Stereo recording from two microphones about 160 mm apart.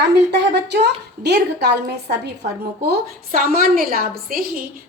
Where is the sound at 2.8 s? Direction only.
70° right (ahead or behind).